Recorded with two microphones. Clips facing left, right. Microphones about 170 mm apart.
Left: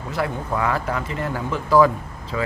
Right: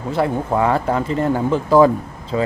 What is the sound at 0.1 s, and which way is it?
Speech, 30° right (ahead or behind).